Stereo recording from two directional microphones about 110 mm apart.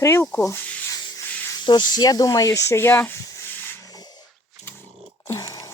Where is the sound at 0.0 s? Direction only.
25° left (ahead or behind).